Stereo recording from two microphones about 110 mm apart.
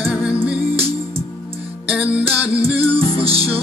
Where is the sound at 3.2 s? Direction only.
60° right (ahead or behind).